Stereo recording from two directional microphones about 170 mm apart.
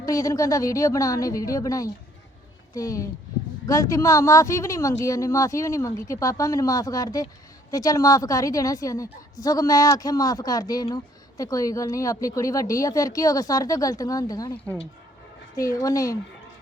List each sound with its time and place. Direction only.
0.0 s speech: 20° left (ahead or behind)